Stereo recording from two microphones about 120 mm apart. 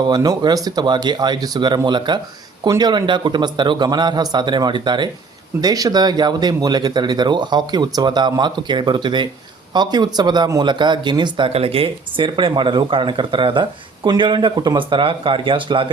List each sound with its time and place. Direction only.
0.0 s speech: 35° right (ahead or behind)
11.5 s speech: 50° right (ahead or behind)